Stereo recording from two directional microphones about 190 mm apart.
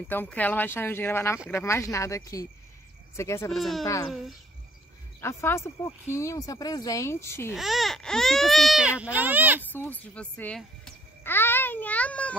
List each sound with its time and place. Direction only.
0.1 s a woman's voice: 10° left (ahead or behind)
3.5 s speech: centre (ahead or behind)
3.8 s a woman's voice: 15° left (ahead or behind)
5.2 s a woman's voice: 15° left (ahead or behind)
7.5 s speech: centre (ahead or behind)
9.7 s a woman's voice: 10° left (ahead or behind)